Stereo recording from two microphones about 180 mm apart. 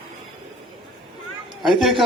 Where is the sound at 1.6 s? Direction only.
Centre (ahead or behind).